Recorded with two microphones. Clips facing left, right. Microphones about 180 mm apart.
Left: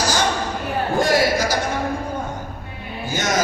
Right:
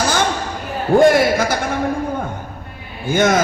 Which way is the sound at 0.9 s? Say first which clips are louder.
Right 7 dB; 55° right (ahead or behind).